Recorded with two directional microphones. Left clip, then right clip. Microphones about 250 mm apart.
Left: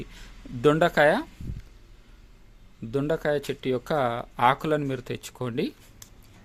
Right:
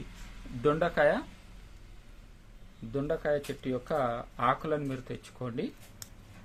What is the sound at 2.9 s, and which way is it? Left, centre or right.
Speech, left.